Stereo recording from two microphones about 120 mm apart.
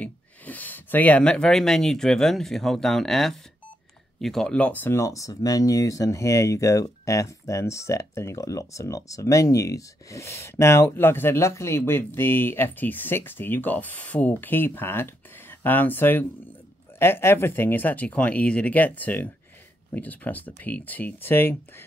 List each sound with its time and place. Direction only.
0.0 s speech: 15° left (ahead or behind)